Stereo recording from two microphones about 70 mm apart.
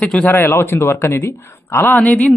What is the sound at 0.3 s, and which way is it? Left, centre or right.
Speech, left.